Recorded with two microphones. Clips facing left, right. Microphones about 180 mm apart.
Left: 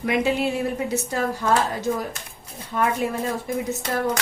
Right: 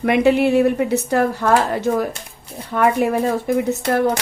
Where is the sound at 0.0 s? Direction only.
65° right (ahead or behind).